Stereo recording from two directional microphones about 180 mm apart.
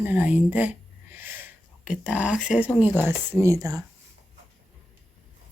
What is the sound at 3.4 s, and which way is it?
Speech, 20° right (ahead or behind).